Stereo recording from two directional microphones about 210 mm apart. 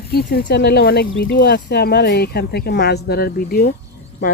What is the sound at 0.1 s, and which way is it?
Speech, 50° left (ahead or behind).